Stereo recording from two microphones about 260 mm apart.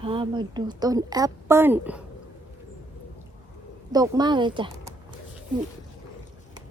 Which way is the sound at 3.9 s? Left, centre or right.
Centre.